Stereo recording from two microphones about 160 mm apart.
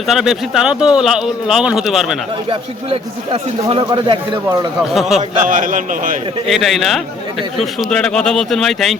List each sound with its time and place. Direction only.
0.1 s a man's voice: centre (ahead or behind)
2.5 s a man's voice: 40° right (ahead or behind)
4.8 s a man's voice: centre (ahead or behind)
5.4 s a man's voice: 55° right (ahead or behind)
6.5 s a man's voice: centre (ahead or behind)